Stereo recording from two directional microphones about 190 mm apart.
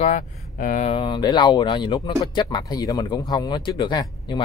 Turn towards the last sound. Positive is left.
turn(degrees=25)  # may be behind; listen again after turning